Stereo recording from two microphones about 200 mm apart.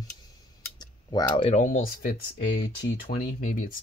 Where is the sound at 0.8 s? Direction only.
20° left (ahead or behind).